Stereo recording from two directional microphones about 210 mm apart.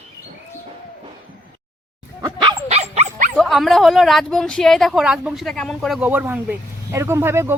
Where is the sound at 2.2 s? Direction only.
20° right (ahead or behind).